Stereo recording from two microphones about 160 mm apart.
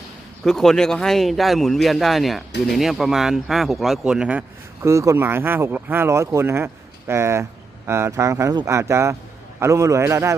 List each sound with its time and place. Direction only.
0.4 s speech: 5° left (ahead or behind); by 10.3 s 15° right (ahead or behind)